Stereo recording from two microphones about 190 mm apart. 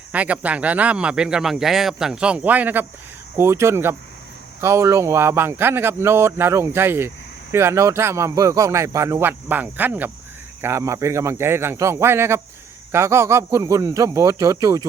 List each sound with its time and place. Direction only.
0.1 s a man's voice: 5° right (ahead or behind)